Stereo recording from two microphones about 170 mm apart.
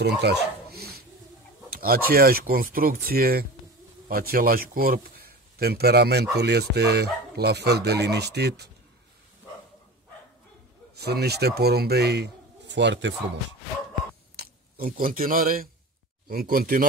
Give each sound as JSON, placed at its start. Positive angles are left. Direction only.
{"t": 0.0, "sound": "dog", "side_deg": -75}
{"t": 1.7, "sound": "a man's voice", "side_deg": -60}
{"t": 11.0, "sound": "a man's voice", "side_deg": -70}
{"t": 14.4, "sound": "speech", "side_deg": -60}